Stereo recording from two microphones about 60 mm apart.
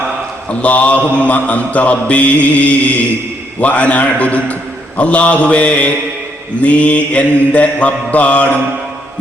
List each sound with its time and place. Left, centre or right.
0.6 s mantra: left